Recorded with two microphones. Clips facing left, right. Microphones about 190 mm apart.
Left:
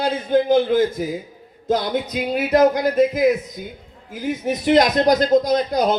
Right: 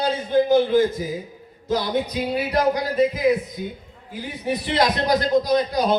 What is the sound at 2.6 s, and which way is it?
A man's voice, 45° left (ahead or behind).